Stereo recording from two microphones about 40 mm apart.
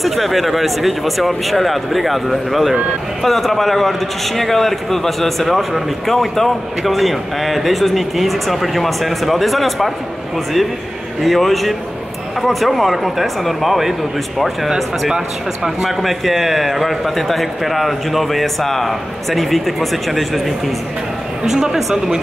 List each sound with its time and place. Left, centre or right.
0.0 s a man's voice: centre
11.1 s a man's voice: centre
15.1 s a man's voice: centre
21.5 s speech: centre